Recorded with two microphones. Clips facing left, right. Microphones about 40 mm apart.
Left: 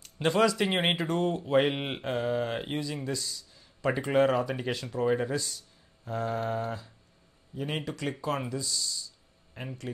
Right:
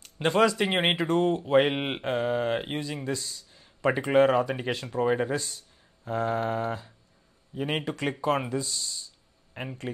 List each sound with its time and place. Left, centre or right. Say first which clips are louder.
0.0 s speech: right 2 dB; centre
6.0 s a sound: right 4 dB; right
7.5 s speech: right 4 dB; right